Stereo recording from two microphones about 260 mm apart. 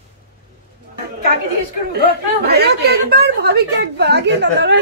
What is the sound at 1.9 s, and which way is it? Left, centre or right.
Speech, right.